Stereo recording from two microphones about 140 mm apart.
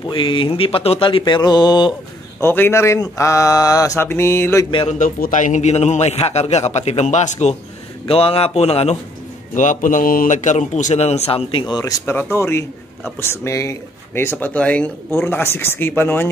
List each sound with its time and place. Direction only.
0.1 s speech: 35° left (ahead or behind)
2.4 s speech: 15° left (ahead or behind)
4.8 s a man's voice: 70° left (ahead or behind)
8.1 s a man's voice: 40° left (ahead or behind)
9.6 s a man's voice: 65° left (ahead or behind); by 11.8 s 35° left (ahead or behind)
11.8 s speech: 20° left (ahead or behind)